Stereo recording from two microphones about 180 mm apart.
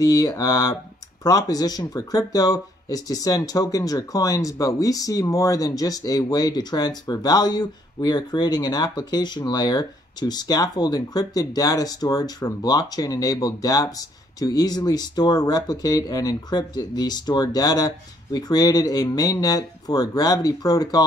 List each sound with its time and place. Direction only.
0.0 s speech: 20° left (ahead or behind)